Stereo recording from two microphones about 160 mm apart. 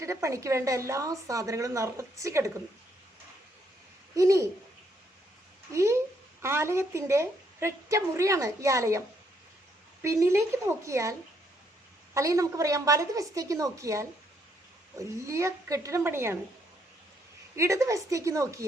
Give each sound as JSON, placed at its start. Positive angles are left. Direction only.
{"t": 0.0, "sound": "a woman's voice", "side_deg": -20}
{"t": 4.1, "sound": "a woman's voice", "side_deg": -20}
{"t": 5.7, "sound": "a woman's voice", "side_deg": -20}
{"t": 12.1, "sound": "a woman's voice", "side_deg": -20}
{"t": 17.6, "sound": "a woman's voice", "side_deg": -20}